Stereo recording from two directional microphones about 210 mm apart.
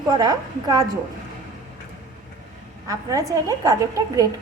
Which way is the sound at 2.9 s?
15° right (ahead or behind).